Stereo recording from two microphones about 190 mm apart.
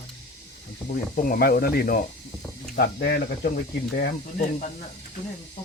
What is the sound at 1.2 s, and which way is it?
Speech, 50° left (ahead or behind).